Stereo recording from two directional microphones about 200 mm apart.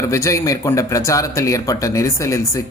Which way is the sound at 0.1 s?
15° left (ahead or behind).